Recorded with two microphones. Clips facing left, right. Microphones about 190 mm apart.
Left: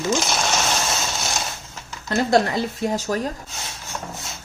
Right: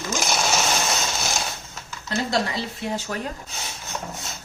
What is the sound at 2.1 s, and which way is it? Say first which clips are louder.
Speech: left 6 dB; 50° left (ahead or behind).